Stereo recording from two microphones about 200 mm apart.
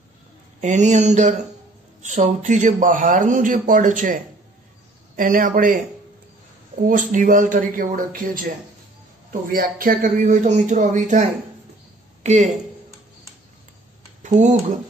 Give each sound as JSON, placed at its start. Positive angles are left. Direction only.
{"t": 0.6, "sound": "a man's voice", "side_deg": -35}
{"t": 6.9, "sound": "a man's voice", "side_deg": -40}
{"t": 14.2, "sound": "speech", "side_deg": -35}